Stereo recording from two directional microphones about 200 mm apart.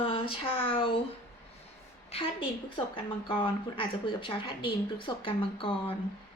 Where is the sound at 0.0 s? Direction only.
25° left (ahead or behind).